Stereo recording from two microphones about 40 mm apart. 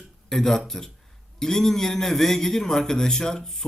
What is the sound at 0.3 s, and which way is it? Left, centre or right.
A man's voice, centre.